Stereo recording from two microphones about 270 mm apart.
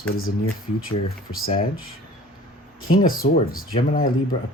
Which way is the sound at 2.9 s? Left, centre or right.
Left.